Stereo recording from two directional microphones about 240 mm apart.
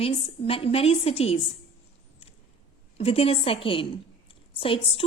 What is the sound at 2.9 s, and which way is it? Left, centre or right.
A woman's voice, left.